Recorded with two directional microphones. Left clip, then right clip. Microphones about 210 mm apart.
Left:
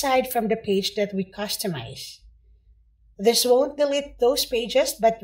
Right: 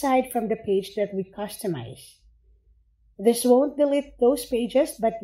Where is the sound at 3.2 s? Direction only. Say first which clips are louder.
Left 1 dB; 45° right (ahead or behind).